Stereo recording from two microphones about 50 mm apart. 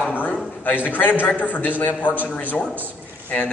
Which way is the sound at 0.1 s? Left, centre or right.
Left.